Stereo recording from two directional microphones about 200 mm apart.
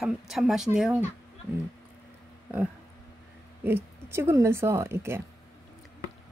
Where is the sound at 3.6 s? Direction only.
10° right (ahead or behind).